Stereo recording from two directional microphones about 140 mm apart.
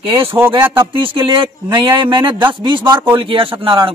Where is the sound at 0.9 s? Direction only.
35° right (ahead or behind).